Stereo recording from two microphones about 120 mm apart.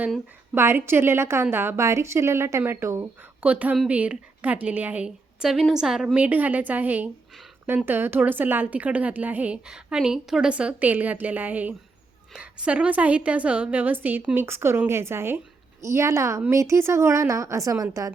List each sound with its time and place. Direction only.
0.5 s a woman's voice: 20° right (ahead or behind)